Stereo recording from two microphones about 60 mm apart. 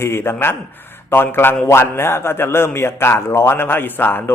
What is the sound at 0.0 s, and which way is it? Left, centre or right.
A man's voice, left.